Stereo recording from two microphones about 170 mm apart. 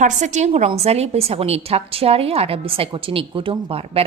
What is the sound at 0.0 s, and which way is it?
A woman's voice, 45° right (ahead or behind).